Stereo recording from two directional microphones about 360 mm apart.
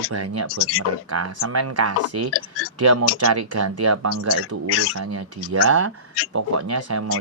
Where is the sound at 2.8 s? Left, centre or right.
Right.